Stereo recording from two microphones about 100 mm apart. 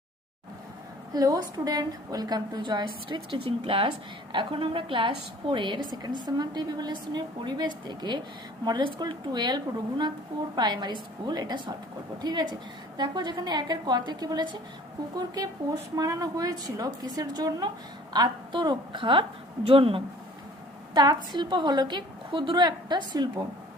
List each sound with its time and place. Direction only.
1.1 s a woman's voice: 40° right (ahead or behind); by 3.3 s 55° right (ahead or behind)
3.4 s speech: 70° right (ahead or behind)
4.3 s a woman's voice: 55° right (ahead or behind)
19.6 s speech: 65° right (ahead or behind)
20.9 s a woman's voice: 45° right (ahead or behind)